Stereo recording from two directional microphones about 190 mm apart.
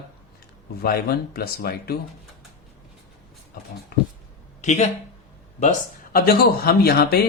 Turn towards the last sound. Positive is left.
turn(degrees=55)  # may be behind; listen again after turning